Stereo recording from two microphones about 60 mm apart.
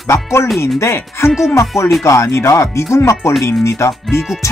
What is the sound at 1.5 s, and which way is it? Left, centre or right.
Speech, left.